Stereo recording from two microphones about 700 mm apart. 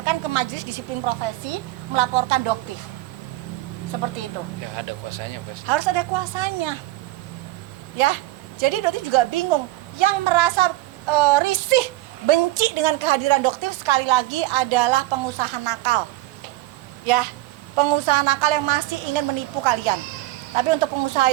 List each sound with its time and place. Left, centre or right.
0.0 s a woman's voice: right
5.6 s a woman's voice: right
7.9 s a woman's voice: right
17.1 s a woman's voice: right